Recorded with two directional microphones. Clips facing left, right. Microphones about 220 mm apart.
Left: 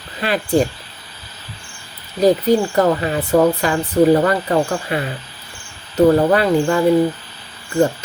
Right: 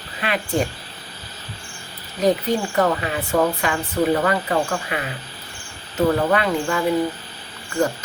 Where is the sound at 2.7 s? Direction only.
35° left (ahead or behind).